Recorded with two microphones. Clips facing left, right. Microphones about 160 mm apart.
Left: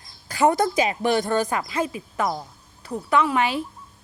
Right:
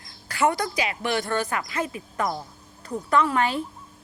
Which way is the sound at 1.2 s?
20° left (ahead or behind).